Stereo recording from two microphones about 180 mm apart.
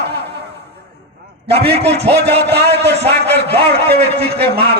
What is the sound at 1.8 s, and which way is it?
A man's voice, 70° right (ahead or behind).